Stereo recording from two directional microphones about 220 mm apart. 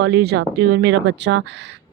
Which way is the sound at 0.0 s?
50° right (ahead or behind).